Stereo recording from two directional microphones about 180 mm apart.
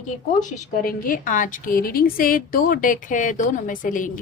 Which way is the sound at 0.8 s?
50° left (ahead or behind).